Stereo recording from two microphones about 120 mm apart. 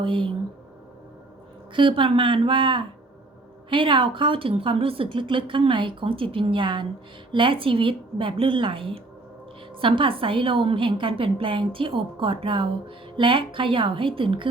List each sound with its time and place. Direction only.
0.0 s a woman's voice: 45° right (ahead or behind)
1.7 s a woman's voice: 45° right (ahead or behind)